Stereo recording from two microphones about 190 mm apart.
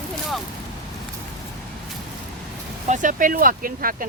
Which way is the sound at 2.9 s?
45° right (ahead or behind).